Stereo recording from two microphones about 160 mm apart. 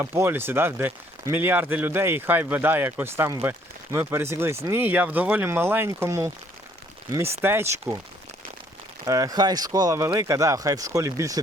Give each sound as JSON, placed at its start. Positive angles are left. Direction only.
{"t": 0.0, "sound": "speech", "side_deg": -15}
{"t": 7.4, "sound": "speech", "side_deg": -15}
{"t": 9.0, "sound": "speech", "side_deg": -20}